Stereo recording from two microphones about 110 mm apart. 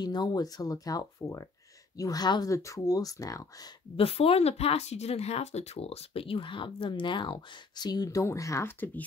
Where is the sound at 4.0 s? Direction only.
60° left (ahead or behind).